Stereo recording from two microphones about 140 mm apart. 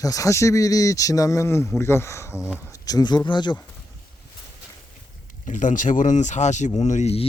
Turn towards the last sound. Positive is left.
turn(degrees=50)  # may be behind; listen again after turning